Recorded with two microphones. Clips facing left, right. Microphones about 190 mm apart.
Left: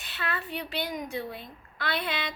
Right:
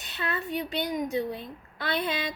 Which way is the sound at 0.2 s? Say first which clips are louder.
Right 3 dB; 20° right (ahead or behind).